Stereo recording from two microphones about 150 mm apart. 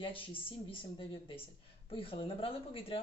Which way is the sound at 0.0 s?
35° left (ahead or behind).